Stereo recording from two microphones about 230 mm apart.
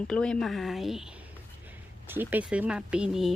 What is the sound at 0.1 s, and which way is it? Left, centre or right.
A woman's voice, centre.